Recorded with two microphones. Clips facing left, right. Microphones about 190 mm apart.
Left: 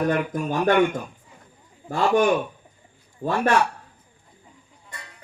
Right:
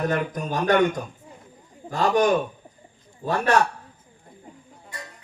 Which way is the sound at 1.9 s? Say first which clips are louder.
Left 1 dB; 40° right (ahead or behind).